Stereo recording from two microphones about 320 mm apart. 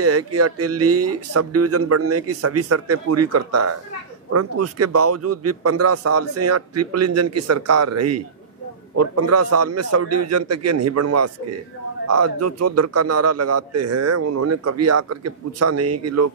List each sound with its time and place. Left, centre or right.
0.0 s a man's voice: right